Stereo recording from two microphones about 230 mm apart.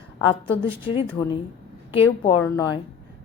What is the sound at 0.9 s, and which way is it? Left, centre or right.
A woman's voice, left.